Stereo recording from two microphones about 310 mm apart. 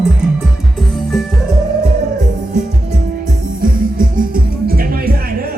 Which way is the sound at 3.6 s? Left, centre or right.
Right.